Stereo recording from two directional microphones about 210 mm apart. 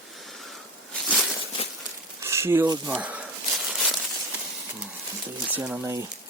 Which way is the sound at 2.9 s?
5° right (ahead or behind).